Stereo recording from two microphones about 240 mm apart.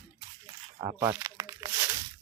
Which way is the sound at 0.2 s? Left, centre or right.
Centre.